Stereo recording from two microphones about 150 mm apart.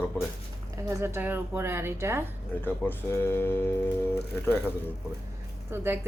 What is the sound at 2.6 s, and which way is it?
Speech, 15° left (ahead or behind).